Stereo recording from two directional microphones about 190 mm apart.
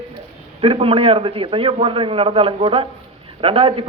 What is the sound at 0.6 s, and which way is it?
A man's voice, 30° right (ahead or behind).